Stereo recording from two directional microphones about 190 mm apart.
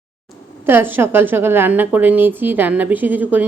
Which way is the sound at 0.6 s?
10° right (ahead or behind).